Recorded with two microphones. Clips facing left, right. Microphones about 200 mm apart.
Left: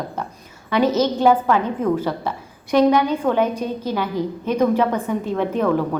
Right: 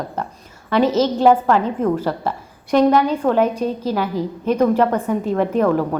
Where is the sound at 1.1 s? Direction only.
Centre (ahead or behind).